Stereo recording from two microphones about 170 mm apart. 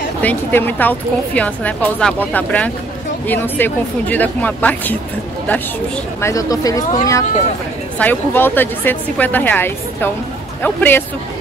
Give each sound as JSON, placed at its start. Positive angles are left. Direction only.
{"t": 0.2, "sound": "a woman's voice", "side_deg": 10}
{"t": 6.2, "sound": "a woman's voice", "side_deg": 20}